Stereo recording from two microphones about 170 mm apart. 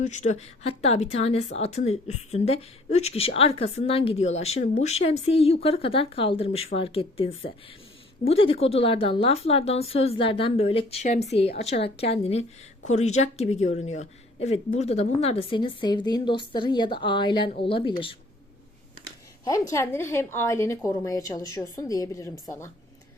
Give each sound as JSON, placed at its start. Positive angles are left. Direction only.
{"t": 0.0, "sound": "a woman's voice", "side_deg": 45}
{"t": 19.7, "sound": "a woman's voice", "side_deg": 15}